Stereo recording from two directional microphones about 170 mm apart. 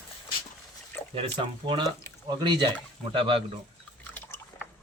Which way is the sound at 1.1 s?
30° right (ahead or behind).